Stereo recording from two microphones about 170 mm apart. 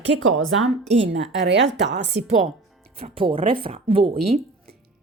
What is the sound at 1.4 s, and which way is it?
Speech, 90° right.